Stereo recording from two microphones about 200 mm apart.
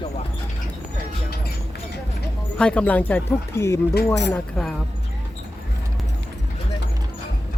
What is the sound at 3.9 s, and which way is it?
Speech, 60° left (ahead or behind).